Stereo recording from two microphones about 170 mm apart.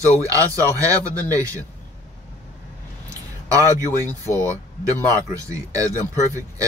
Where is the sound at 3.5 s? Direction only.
20° right (ahead or behind).